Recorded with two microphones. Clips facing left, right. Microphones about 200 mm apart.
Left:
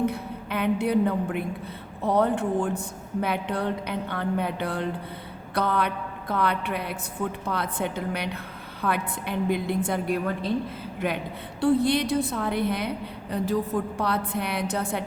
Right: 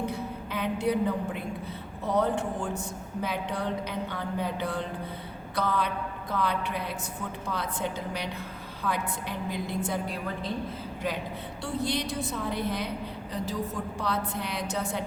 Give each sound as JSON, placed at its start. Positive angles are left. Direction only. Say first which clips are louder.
{"t": 0.0, "sound": "a sound", "louder": "left 5 dB", "side_deg": 60}
{"t": 2.0, "sound": "a woman's voice", "louder": "left 4 dB", "side_deg": 60}
{"t": 11.6, "sound": "a woman's voice", "louder": "left 9 dB", "side_deg": 60}